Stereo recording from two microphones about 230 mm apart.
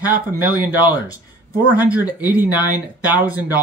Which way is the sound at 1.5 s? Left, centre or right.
Centre.